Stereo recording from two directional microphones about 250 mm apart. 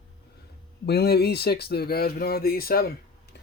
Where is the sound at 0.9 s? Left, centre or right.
Left.